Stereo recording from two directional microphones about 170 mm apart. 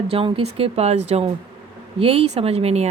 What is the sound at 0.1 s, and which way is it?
Speech, 30° right (ahead or behind).